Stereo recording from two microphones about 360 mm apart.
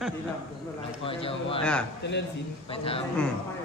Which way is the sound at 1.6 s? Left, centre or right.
Centre.